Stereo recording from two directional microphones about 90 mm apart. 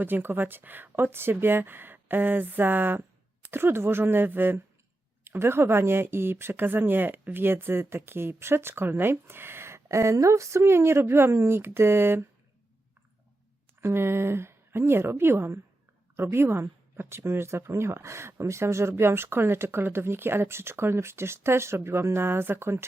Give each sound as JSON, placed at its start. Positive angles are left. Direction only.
{"t": 0.0, "sound": "speech", "side_deg": -20}
{"t": 13.8, "sound": "speech", "side_deg": -25}